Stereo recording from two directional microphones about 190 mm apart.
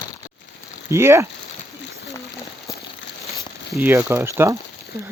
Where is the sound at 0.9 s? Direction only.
15° right (ahead or behind).